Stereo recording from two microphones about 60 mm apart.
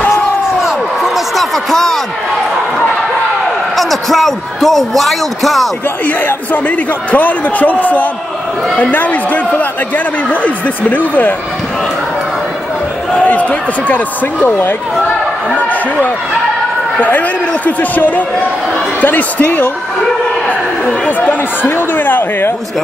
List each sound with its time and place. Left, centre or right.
0.6 s a sound: centre
3.7 s a man's voice: centre
6.0 s a man's voice: left
13.1 s a man's voice: left
21.3 s speech: left